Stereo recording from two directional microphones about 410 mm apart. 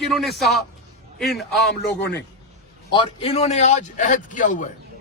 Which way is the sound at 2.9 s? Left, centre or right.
Centre.